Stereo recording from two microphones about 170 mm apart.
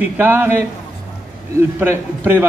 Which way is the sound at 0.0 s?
10° right (ahead or behind).